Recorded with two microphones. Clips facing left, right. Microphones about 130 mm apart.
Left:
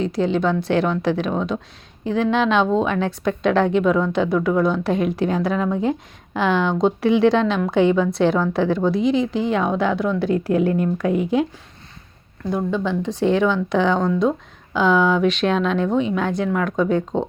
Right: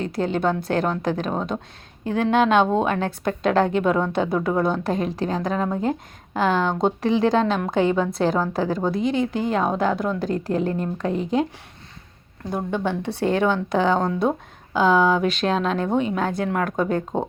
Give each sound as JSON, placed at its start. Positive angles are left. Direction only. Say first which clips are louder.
{"t": 0.0, "sound": "speech", "louder": "left 3 dB", "side_deg": -50}
{"t": 4.3, "sound": "speech", "louder": "left 3 dB", "side_deg": -30}
{"t": 4.6, "sound": "a woman's voice", "louder": "left 3 dB", "side_deg": -45}
{"t": 11.1, "sound": "speech", "louder": "left 3 dB", "side_deg": 10}
{"t": 12.7, "sound": "speech", "louder": "left 2 dB", "side_deg": -55}